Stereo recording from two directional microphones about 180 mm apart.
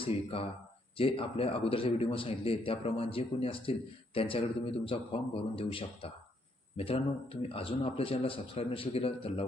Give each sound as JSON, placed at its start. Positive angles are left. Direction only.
{"t": 0.0, "sound": "a man's voice", "side_deg": 30}